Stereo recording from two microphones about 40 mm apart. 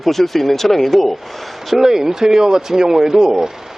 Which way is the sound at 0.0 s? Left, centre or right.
Centre.